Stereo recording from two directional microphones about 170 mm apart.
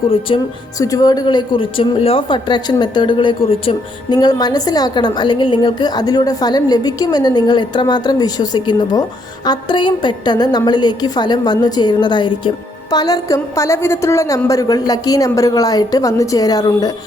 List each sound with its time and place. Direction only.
0.1 s speech: 30° left (ahead or behind)